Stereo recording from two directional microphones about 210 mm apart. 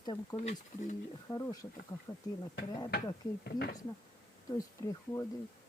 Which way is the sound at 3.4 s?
50° left (ahead or behind).